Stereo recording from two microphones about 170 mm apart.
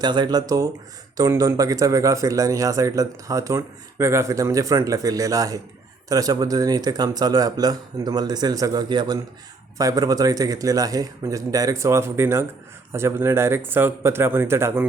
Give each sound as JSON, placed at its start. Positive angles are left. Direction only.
{"t": 0.0, "sound": "speech", "side_deg": -25}